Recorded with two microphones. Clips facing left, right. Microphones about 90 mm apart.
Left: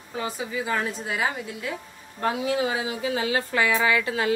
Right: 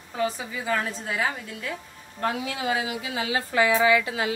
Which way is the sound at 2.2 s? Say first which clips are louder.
Left 3 dB; 30° left (ahead or behind).